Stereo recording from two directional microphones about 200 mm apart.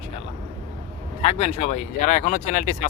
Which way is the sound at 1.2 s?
30° left (ahead or behind).